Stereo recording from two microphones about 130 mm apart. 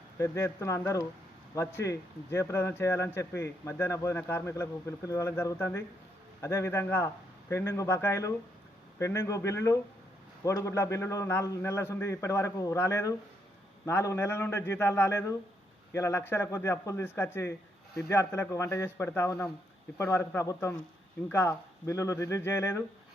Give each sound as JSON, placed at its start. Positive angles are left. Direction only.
{"t": 0.2, "sound": "a man's voice", "side_deg": 20}